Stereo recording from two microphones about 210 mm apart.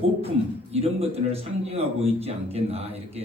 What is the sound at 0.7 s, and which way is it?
A man's voice, 30° right (ahead or behind).